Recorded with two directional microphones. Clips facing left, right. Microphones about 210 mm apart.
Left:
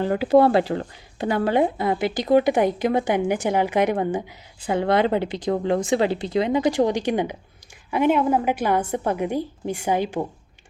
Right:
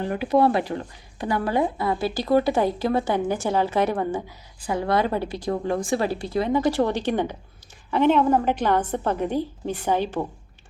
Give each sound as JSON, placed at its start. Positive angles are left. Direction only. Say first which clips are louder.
{"t": 0.3, "sound": "a woman's voice", "louder": "left 3 dB", "side_deg": 30}